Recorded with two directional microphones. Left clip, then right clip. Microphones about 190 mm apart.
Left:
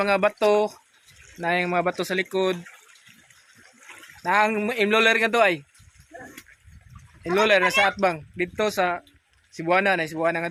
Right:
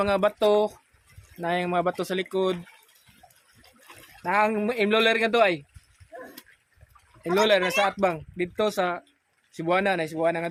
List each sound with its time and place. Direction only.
0.0 s speech: centre (ahead or behind)
4.2 s speech: centre (ahead or behind)
7.3 s speech: centre (ahead or behind)